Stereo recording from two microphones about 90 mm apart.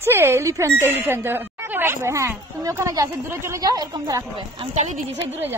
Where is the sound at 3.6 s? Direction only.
50° right (ahead or behind).